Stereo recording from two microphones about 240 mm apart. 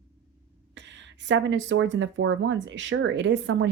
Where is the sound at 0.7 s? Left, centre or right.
Right.